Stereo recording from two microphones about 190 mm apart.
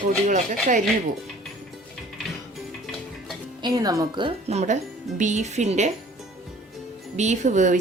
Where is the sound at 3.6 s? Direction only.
20° right (ahead or behind); by 5.9 s 35° right (ahead or behind).